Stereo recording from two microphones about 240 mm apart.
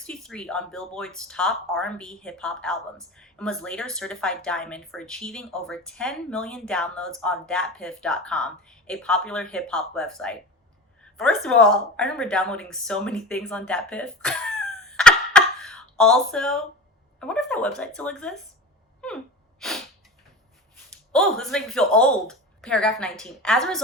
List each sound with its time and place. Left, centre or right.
0.0 s speech: centre
19.0 s gasp: centre
20.9 s speech: centre